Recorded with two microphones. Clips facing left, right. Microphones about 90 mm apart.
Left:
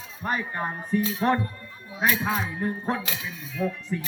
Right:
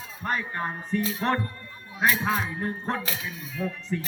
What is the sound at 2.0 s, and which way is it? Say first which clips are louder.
Speech: even; 35° right (ahead or behind).